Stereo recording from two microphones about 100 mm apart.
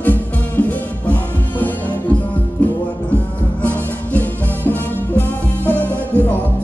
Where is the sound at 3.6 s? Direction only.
15° left (ahead or behind).